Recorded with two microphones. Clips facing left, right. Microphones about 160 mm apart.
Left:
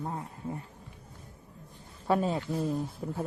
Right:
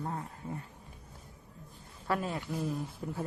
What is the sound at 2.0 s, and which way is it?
Speech, 25° left (ahead or behind).